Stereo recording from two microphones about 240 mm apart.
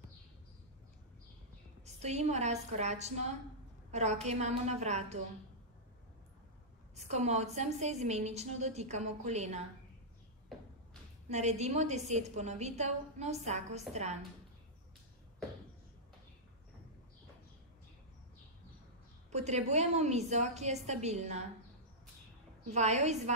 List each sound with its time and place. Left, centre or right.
2.0 s a woman's voice: right
7.0 s a woman's voice: right
11.2 s a woman's voice: right
19.3 s a woman's voice: right
22.7 s a woman's voice: right